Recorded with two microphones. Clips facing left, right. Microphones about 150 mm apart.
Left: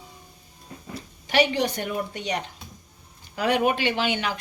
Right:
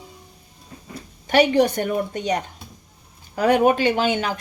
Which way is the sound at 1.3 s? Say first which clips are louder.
Right 6 dB; 50° right (ahead or behind).